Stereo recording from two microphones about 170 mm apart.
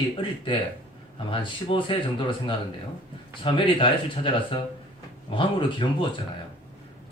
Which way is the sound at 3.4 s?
30° left (ahead or behind).